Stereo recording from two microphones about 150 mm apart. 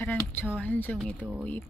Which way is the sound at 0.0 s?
15° left (ahead or behind).